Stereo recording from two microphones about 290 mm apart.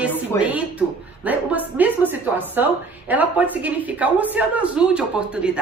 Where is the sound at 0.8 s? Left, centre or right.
Centre.